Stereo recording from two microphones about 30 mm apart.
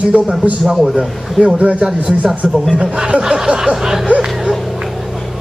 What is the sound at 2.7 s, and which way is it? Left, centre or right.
Speech, right.